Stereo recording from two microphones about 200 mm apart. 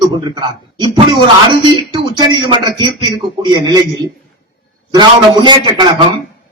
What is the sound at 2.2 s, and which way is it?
A man's voice, 20° right (ahead or behind).